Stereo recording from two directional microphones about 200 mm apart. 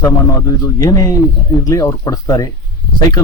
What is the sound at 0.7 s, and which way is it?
A man's voice, 15° left (ahead or behind).